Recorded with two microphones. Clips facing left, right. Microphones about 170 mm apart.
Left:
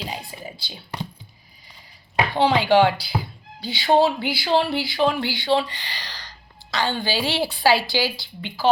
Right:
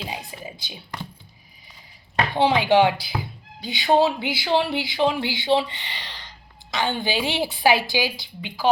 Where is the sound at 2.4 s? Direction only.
20° right (ahead or behind).